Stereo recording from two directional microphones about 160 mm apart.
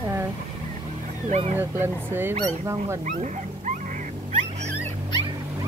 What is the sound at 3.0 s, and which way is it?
Dog, 50° right (ahead or behind).